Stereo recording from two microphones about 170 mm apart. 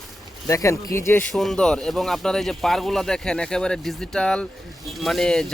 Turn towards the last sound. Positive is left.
turn(degrees=5)  # may be behind; listen again after turning